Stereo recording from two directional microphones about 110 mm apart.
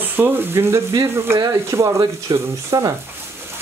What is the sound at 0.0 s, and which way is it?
Speech, 20° right (ahead or behind).